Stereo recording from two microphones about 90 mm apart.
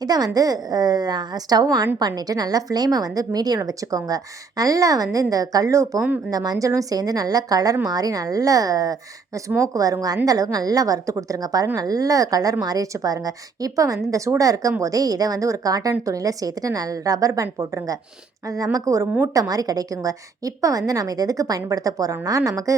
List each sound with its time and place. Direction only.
0.0 s a woman's voice: 45° right (ahead or behind)